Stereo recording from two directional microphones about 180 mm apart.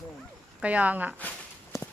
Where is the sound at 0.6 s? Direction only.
10° right (ahead or behind).